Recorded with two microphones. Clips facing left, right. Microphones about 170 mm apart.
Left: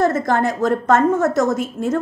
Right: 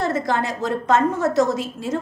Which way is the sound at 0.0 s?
50° left (ahead or behind).